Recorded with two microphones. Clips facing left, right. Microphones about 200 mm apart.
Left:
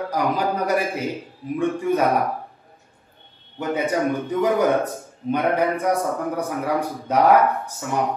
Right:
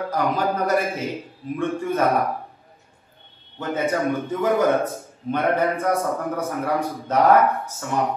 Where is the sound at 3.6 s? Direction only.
15° left (ahead or behind).